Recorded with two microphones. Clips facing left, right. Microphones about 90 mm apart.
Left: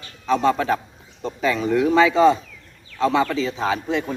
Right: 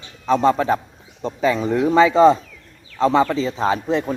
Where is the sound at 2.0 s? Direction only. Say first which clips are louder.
Right 4 dB; 35° right (ahead or behind).